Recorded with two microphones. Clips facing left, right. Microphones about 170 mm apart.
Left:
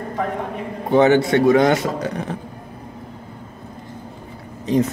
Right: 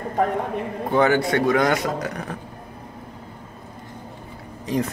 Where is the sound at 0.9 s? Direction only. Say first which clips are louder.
Left 5 dB; 25° left (ahead or behind).